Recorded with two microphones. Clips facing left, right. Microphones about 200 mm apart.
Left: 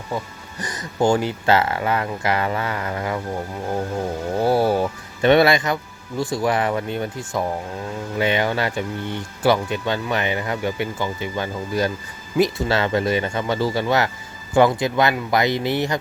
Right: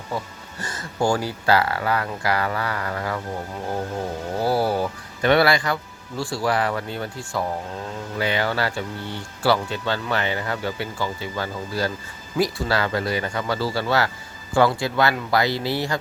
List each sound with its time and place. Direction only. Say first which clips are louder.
0.6 s speech: left 3 dB; 15° left (ahead or behind)
4.4 s speech: left 3 dB; 25° left (ahead or behind)